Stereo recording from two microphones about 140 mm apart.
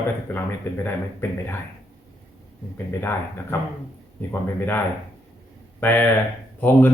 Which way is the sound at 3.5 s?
20° left (ahead or behind).